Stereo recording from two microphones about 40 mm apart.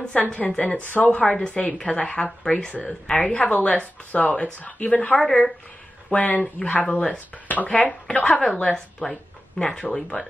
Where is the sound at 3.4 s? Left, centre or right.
Left.